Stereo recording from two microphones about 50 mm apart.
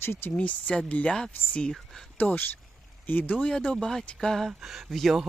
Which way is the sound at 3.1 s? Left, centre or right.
Left.